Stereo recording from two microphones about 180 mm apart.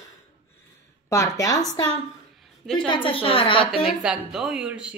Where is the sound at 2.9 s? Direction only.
30° left (ahead or behind).